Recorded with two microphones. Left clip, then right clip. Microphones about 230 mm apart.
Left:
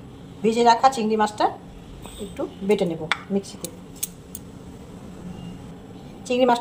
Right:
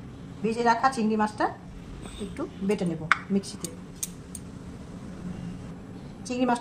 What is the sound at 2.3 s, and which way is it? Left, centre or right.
Speech, right.